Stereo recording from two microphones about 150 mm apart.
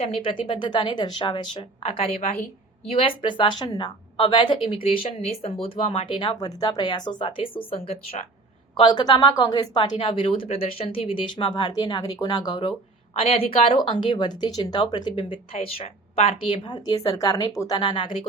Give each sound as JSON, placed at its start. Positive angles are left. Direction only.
{"t": 0.2, "sound": "speech", "side_deg": 35}
{"t": 17.7, "sound": "speech", "side_deg": 35}